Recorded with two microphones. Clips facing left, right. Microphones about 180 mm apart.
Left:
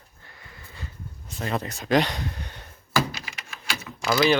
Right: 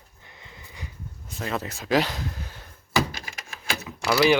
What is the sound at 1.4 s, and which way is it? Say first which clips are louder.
Speech: left 1 dB; centre (ahead or behind).